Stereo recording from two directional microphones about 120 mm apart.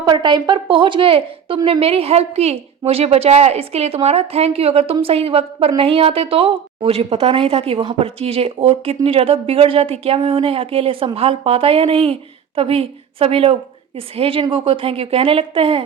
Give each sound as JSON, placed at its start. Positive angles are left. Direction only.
{"t": 0.0, "sound": "a woman's voice", "side_deg": -40}